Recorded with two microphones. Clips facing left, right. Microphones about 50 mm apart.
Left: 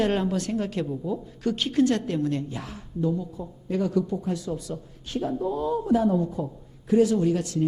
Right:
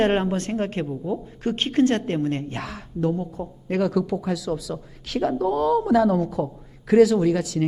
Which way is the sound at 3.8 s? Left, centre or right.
Right.